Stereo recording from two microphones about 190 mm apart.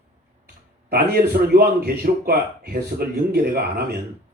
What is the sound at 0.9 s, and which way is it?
A man's voice, 55° right (ahead or behind).